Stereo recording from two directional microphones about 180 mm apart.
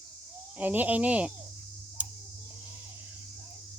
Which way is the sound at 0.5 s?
10° right (ahead or behind).